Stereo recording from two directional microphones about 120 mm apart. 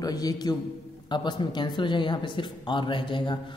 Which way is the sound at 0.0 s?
30° left (ahead or behind).